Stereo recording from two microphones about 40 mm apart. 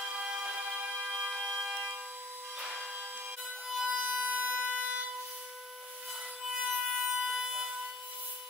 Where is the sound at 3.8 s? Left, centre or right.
Right.